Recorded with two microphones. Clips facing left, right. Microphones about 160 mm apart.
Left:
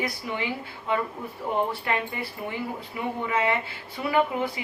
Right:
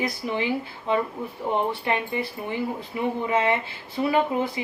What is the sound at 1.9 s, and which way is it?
Speech, 25° right (ahead or behind).